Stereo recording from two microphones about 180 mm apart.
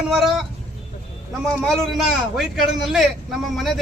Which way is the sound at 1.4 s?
Centre (ahead or behind).